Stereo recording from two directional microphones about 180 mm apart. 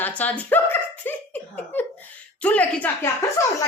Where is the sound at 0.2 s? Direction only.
10° left (ahead or behind).